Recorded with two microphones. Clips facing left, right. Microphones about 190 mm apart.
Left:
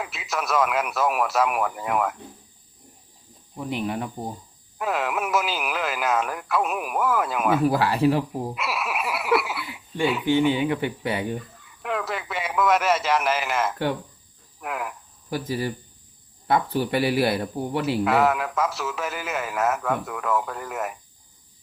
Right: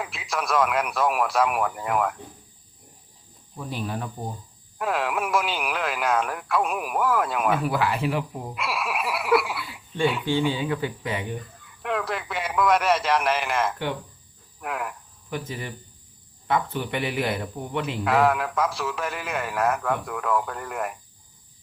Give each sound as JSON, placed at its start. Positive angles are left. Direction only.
{"t": 0.0, "sound": "a man's voice", "side_deg": 0}
{"t": 3.7, "sound": "speech", "side_deg": 20}
{"t": 4.8, "sound": "a man's voice", "side_deg": 0}
{"t": 7.6, "sound": "a man's voice", "side_deg": 35}
{"t": 8.5, "sound": "frog", "side_deg": 0}
{"t": 10.2, "sound": "speech", "side_deg": 20}
{"t": 11.8, "sound": "a man's voice", "side_deg": 0}
{"t": 15.3, "sound": "a man's voice", "side_deg": 35}
{"t": 18.0, "sound": "a man's voice", "side_deg": 0}